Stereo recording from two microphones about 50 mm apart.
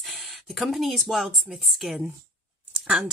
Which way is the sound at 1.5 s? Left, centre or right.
Centre.